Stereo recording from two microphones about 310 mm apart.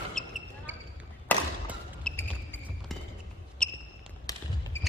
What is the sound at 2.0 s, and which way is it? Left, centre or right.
Basketball bounce, centre.